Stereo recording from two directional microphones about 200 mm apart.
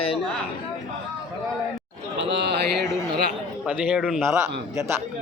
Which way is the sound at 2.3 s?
60° right (ahead or behind).